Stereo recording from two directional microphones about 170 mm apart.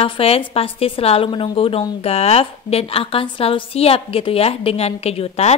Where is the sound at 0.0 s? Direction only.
35° left (ahead or behind).